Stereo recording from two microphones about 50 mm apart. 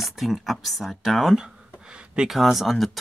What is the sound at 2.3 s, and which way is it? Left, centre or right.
Speech, centre.